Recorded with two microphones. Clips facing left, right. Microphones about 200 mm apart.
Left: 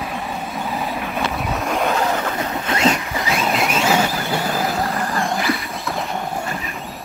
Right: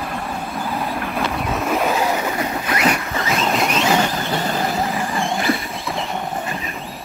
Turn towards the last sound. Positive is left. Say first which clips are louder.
# even
turn(degrees=0)  # may be behind; listen again after turning